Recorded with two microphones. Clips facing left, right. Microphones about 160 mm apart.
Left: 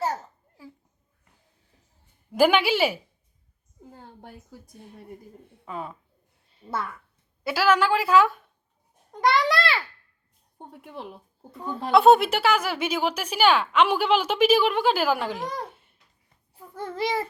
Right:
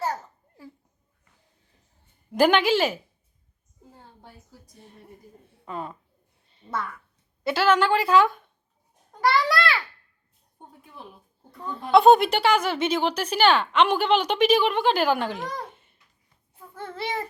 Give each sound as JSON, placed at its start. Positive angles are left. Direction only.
{"t": 2.3, "sound": "speech", "side_deg": 5}
{"t": 3.9, "sound": "a sound", "side_deg": 60}
{"t": 5.6, "sound": "speech", "side_deg": 0}
{"t": 7.4, "sound": "speech", "side_deg": 5}
{"t": 9.3, "sound": "babbling", "side_deg": 25}
{"t": 10.6, "sound": "speech", "side_deg": 70}
{"t": 11.5, "sound": "speech", "side_deg": 0}
{"t": 15.7, "sound": "a sound", "side_deg": 0}
{"t": 16.6, "sound": "a child's voice", "side_deg": 10}